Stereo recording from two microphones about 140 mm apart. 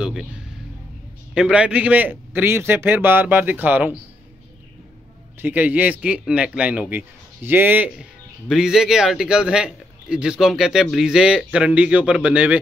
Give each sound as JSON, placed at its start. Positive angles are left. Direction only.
{"t": 0.0, "sound": "music", "side_deg": -5}
{"t": 1.3, "sound": "a man's voice", "side_deg": -5}
{"t": 5.4, "sound": "a man's voice", "side_deg": -10}